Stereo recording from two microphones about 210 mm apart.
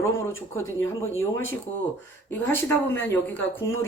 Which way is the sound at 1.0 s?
70° left (ahead or behind).